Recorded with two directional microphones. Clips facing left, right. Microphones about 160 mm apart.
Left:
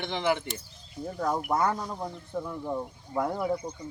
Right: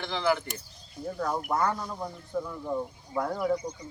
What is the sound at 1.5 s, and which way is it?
Speech, 20° left (ahead or behind).